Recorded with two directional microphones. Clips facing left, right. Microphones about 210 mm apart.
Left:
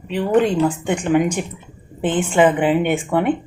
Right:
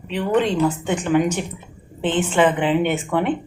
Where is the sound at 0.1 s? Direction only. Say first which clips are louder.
Left 3 dB; 10° left (ahead or behind).